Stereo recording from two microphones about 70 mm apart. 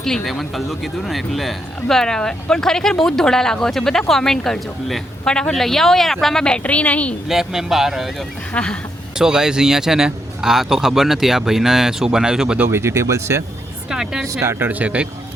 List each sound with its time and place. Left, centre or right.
0.0 s speech: centre
7.3 s speech: centre
8.5 s speech: centre
9.1 s a man's voice: centre
12.5 s speech: right
13.9 s a man's voice: centre
14.3 s speech: right
14.7 s speech: centre